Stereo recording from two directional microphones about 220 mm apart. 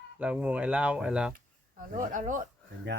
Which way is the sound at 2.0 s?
35° right (ahead or behind).